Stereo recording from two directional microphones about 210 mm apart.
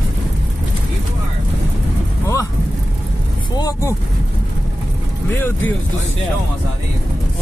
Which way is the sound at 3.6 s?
15° left (ahead or behind).